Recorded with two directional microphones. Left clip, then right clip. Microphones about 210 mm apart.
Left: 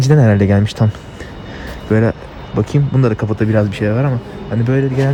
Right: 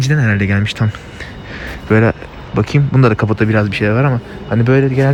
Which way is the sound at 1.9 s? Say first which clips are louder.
Right 3 dB; 10° left (ahead or behind).